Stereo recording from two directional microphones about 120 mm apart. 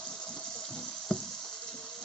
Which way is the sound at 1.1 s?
5° left (ahead or behind).